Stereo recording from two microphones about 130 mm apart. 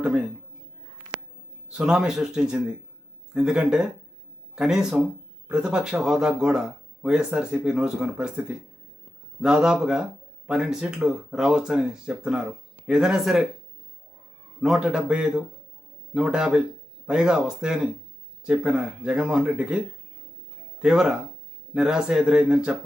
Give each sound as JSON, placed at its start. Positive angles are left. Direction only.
{"t": 0.0, "sound": "a man's voice", "side_deg": -10}
{"t": 1.7, "sound": "speech", "side_deg": -5}
{"t": 14.6, "sound": "speech", "side_deg": -5}